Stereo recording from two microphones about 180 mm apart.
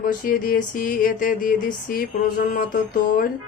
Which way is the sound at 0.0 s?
50° left (ahead or behind).